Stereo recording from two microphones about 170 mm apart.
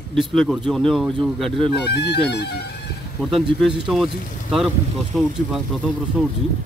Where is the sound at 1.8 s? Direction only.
75° left (ahead or behind).